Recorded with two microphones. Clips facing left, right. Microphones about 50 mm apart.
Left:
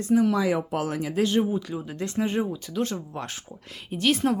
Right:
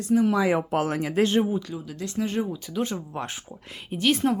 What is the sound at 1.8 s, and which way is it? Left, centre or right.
Speech, left.